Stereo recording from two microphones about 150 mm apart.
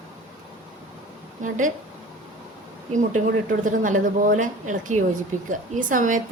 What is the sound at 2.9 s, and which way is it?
A woman's voice, 55° right (ahead or behind).